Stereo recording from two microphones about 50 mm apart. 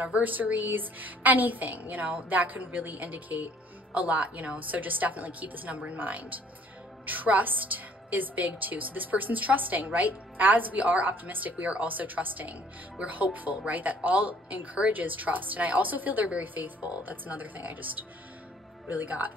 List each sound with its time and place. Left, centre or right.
0.0 s speech: right